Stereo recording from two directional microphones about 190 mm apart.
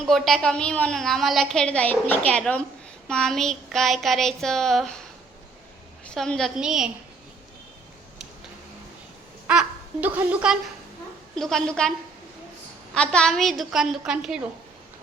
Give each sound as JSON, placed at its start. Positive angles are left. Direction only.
{"t": 0.1, "sound": "a woman's voice", "side_deg": 0}
{"t": 6.1, "sound": "a woman's voice", "side_deg": 5}
{"t": 9.5, "sound": "a woman's voice", "side_deg": -5}